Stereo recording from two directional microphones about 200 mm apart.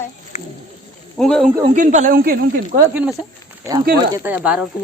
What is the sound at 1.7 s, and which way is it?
Speech, 40° right (ahead or behind).